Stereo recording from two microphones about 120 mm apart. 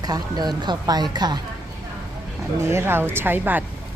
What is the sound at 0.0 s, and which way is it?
Speech, 35° right (ahead or behind).